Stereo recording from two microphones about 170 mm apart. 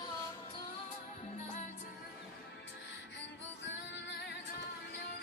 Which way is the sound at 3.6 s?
90° left.